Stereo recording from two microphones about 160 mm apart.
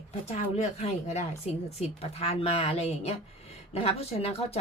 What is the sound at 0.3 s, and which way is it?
A woman's voice, 45° left (ahead or behind).